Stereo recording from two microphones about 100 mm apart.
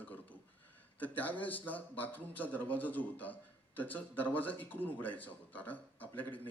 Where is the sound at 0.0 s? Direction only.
15° left (ahead or behind).